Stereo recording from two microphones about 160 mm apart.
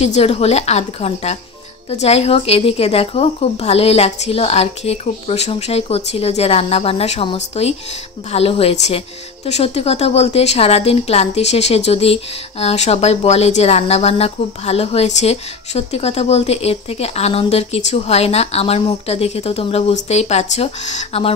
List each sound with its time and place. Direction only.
0.0 s a woman's voice: 40° left (ahead or behind)